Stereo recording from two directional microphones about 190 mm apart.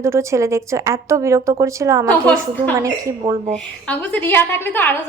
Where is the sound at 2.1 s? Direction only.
5° left (ahead or behind).